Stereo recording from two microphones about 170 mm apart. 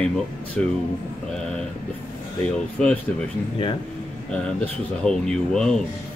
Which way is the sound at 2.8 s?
5° left (ahead or behind).